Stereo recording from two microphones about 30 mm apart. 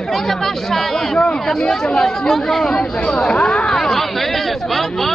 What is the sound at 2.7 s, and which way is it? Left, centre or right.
Speech, left.